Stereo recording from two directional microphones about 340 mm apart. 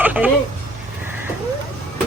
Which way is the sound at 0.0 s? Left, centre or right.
Centre.